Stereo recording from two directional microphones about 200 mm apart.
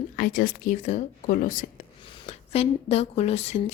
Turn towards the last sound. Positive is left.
turn(degrees=35)  # may be behind; listen again after turning